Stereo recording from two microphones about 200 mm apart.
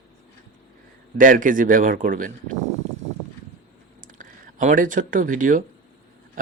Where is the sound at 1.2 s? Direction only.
40° right (ahead or behind).